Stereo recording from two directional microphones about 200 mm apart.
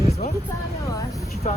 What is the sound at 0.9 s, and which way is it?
Speech, 15° left (ahead or behind).